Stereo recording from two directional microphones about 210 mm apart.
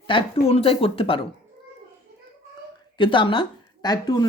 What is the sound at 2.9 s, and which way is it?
Speech, 25° left (ahead or behind).